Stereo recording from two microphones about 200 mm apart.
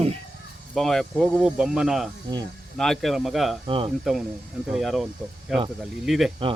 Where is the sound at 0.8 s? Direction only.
Centre (ahead or behind).